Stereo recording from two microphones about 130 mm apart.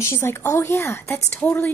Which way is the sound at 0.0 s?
20° left (ahead or behind).